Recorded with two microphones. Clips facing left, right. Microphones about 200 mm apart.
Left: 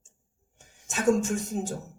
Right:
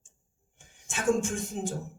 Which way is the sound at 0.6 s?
40° left (ahead or behind).